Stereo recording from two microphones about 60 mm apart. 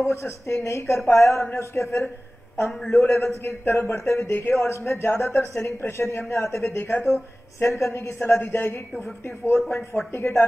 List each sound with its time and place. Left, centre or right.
0.0 s a man's voice: left
2.8 s a man's voice: centre
3.1 s a man's voice: left